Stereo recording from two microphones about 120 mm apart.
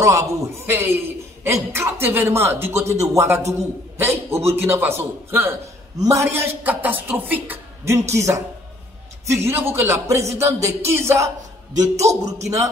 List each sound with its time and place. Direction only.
0.0 s a man's voice: 25° right (ahead or behind)